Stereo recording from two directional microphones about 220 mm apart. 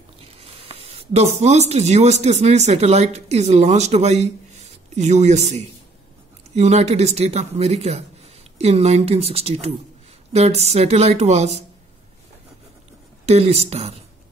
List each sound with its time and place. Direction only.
0.2 s speech: 25° right (ahead or behind)
13.2 s speech: 30° right (ahead or behind)